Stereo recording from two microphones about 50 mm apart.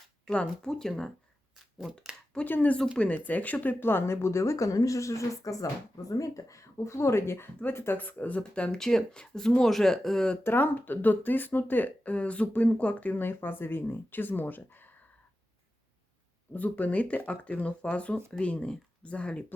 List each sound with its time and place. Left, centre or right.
0.3 s speech: centre
2.4 s speech: left
7.9 s speech: left
8.8 s speech: centre
10.4 s speech: left
16.6 s speech: left